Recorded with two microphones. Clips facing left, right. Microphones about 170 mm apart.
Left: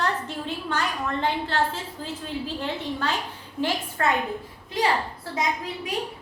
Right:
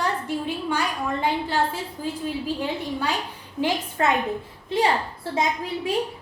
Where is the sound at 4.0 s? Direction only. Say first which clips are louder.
Right 2 dB; 20° right (ahead or behind).